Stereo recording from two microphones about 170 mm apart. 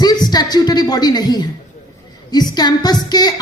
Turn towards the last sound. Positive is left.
turn(degrees=25)  # may be behind; listen again after turning